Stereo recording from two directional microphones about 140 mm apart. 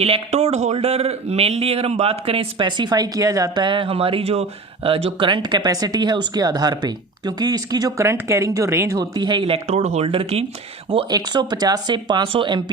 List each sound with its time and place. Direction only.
0.0 s speech: 50° right (ahead or behind)
11.1 s speech: 30° right (ahead or behind)